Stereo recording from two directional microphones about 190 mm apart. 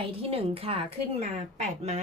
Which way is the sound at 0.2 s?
30° right (ahead or behind).